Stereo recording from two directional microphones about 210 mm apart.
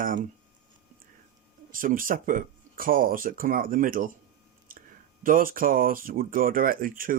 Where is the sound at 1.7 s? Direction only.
40° right (ahead or behind).